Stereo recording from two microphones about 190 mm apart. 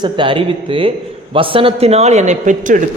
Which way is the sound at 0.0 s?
25° right (ahead or behind).